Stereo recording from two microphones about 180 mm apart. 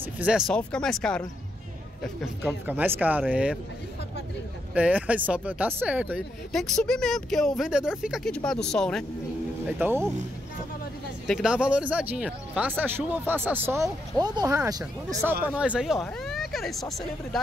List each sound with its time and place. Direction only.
0.2 s speech: 5° right (ahead or behind)
2.4 s speech: 10° right (ahead or behind)
4.7 s speech: 10° right (ahead or behind)
9.7 s speech: 10° right (ahead or behind)
11.2 s speech: 5° right (ahead or behind); by 15.3 s 20° right (ahead or behind)
15.4 s speech: 5° right (ahead or behind)